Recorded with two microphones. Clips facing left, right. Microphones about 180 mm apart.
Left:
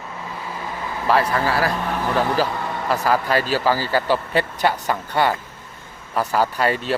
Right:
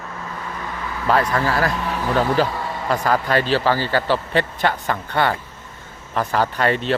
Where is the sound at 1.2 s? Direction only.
30° left (ahead or behind).